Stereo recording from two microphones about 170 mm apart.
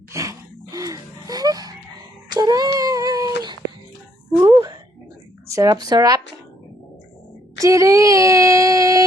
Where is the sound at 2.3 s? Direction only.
20° right (ahead or behind).